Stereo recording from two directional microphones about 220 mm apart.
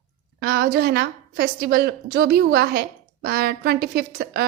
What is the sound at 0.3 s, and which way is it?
A woman's voice, 45° right (ahead or behind).